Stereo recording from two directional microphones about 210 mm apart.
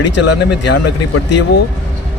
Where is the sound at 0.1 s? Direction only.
55° left (ahead or behind).